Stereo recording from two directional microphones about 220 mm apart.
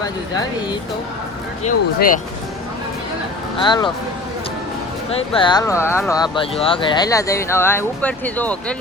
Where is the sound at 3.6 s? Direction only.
20° left (ahead or behind).